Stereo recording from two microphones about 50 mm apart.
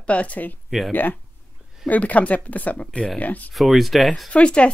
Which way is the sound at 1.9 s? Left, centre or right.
Left.